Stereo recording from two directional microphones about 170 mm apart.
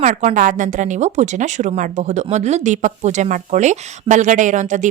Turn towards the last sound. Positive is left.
turn(degrees=-45)  # may be behind; listen again after turning